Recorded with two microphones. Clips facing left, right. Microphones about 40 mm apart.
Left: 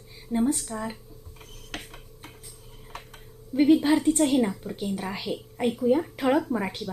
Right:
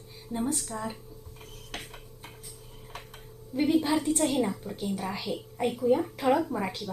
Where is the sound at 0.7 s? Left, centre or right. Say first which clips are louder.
Left 2 dB; centre.